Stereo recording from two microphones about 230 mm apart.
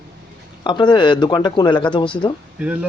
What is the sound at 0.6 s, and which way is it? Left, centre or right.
Speech, centre.